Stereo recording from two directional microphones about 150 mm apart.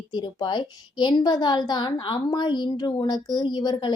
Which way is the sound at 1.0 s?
30° left (ahead or behind).